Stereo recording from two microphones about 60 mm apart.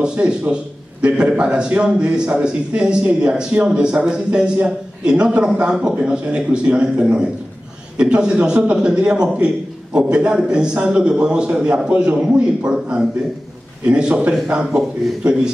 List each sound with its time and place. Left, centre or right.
0.0 s a man's voice: centre
13.8 s a man's voice: centre